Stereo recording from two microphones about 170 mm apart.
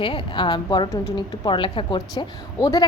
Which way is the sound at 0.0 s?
30° left (ahead or behind).